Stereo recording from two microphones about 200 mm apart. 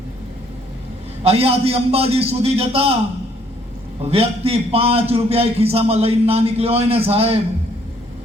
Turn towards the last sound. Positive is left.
turn(degrees=-30)  # may be behind; listen again after turning